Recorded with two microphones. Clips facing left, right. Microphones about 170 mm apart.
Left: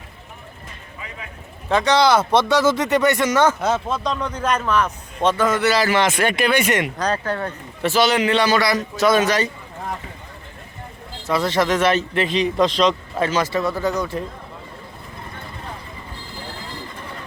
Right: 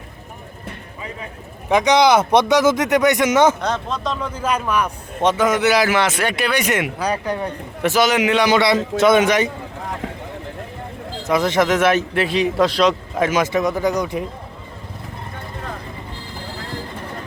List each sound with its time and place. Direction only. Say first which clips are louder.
1.7 s a man's voice: right 2 dB; 15° right (ahead or behind)
3.6 s a man's voice: left 2 dB; 5° left (ahead or behind); by 9.5 s 20° right (ahead or behind)
11.3 s a man's voice: right 2 dB; 15° right (ahead or behind)